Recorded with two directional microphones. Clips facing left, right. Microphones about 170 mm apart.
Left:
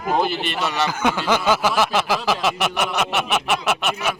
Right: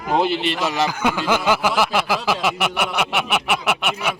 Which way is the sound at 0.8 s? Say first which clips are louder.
Left 1 dB; 10° right (ahead or behind).